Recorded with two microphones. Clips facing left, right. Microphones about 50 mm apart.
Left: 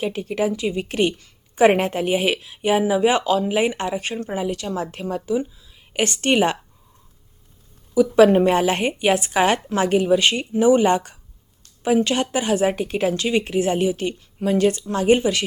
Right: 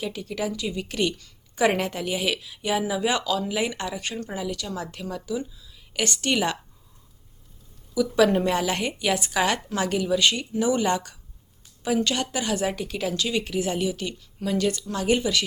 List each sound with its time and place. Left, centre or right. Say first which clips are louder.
0.0 s speech: left 7 dB; left
7.9 s a woman's voice: left 7 dB; left